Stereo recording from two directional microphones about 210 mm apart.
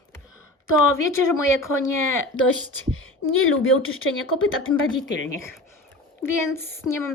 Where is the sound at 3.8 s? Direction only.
75° left (ahead or behind).